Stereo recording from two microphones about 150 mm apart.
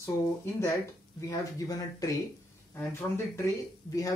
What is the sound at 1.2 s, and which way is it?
Speech, 20° left (ahead or behind).